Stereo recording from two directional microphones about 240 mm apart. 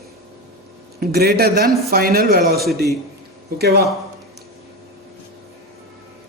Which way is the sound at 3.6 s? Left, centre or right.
Right.